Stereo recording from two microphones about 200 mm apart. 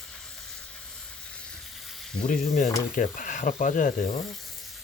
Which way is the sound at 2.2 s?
40° left (ahead or behind).